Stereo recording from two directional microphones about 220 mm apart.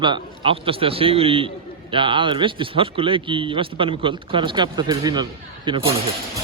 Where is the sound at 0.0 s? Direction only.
20° right (ahead or behind).